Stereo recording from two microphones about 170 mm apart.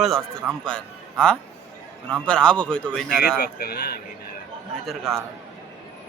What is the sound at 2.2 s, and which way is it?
Speech, 5° left (ahead or behind).